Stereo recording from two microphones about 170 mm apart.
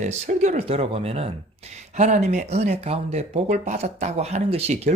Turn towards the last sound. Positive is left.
turn(degrees=-40)  # may be behind; listen again after turning